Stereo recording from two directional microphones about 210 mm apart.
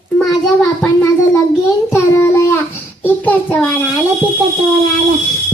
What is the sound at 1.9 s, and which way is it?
Child singing, 10° left (ahead or behind).